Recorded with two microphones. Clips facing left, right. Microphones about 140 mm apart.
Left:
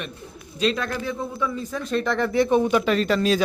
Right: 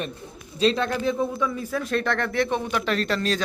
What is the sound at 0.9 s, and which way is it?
Speech, 15° right (ahead or behind).